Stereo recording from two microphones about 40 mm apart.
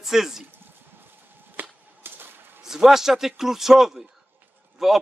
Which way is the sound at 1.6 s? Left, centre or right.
Right.